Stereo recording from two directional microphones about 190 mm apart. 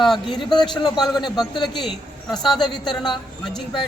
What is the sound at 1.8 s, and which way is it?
A woman's voice, centre (ahead or behind).